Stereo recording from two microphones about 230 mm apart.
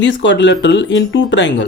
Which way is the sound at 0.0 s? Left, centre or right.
Left.